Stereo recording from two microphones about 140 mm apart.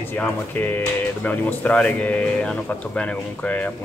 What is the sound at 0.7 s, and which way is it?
A man's voice, 15° left (ahead or behind).